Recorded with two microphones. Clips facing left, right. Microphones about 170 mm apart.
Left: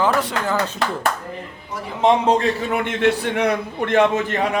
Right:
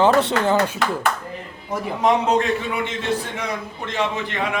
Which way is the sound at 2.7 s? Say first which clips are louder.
Left 5 dB; 60° left (ahead or behind).